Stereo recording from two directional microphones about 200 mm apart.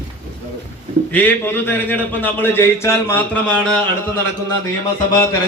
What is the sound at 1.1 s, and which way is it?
A man's voice, 10° left (ahead or behind).